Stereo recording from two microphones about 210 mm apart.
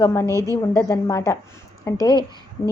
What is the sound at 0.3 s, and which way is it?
Speech, 15° right (ahead or behind).